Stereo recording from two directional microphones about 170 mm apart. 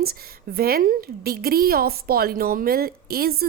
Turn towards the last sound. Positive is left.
turn(degrees=-65)  # may be behind; listen again after turning